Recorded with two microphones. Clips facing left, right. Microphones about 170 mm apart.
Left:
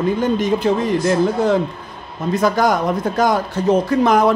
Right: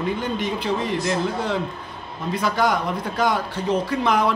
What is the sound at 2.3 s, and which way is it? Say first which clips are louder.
Speech: left 5 dB; 45° left (ahead or behind).